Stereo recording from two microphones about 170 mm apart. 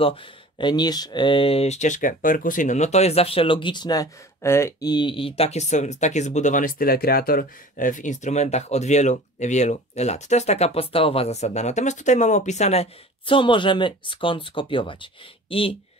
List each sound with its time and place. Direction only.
0.0 s speech: 30° left (ahead or behind)